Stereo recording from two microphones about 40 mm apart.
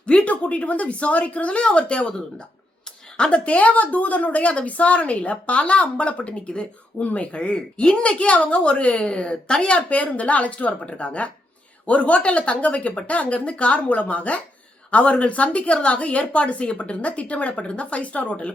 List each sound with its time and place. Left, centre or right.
0.0 s a woman's voice: left
3.2 s a woman's voice: left
7.0 s a woman's voice: left
9.7 s a woman's voice: left